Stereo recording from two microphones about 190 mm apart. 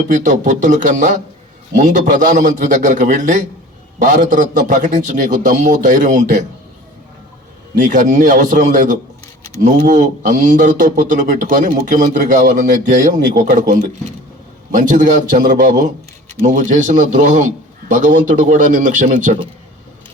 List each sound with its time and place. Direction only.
0.1 s a man's voice: 40° right (ahead or behind)
7.8 s speech: 40° right (ahead or behind)